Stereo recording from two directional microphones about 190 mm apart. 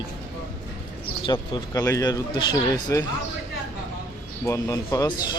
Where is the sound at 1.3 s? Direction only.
20° left (ahead or behind).